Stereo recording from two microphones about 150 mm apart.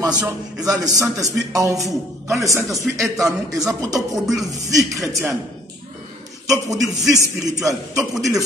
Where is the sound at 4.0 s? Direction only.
Centre (ahead or behind).